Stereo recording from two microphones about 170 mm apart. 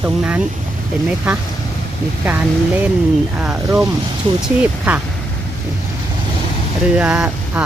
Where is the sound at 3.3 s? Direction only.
10° right (ahead or behind).